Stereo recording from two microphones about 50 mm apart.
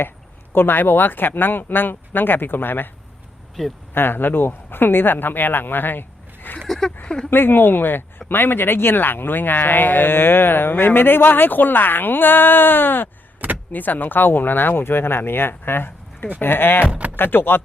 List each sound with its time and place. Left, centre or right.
0.5 s speech: left
3.6 s speech: centre
3.9 s speech: left
6.6 s a sound: centre
7.3 s speech: left
13.4 s power windows: right
13.7 s speech: left
16.8 s speech: right
17.2 s speech: left